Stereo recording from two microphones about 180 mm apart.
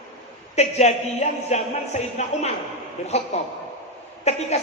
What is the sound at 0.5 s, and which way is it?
A woman's voice, 40° left (ahead or behind).